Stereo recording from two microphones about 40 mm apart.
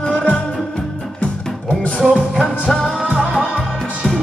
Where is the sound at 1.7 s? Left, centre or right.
Left.